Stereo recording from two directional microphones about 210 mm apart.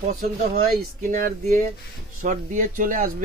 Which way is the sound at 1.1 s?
40° right (ahead or behind).